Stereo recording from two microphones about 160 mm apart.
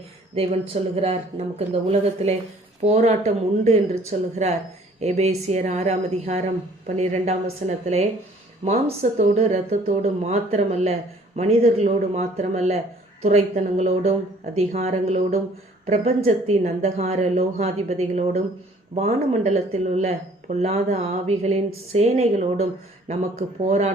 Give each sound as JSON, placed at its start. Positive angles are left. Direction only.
{"t": 0.7, "sound": "a woman's voice", "side_deg": -40}